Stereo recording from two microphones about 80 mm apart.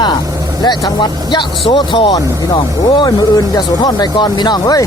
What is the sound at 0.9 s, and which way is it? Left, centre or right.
Speech, left.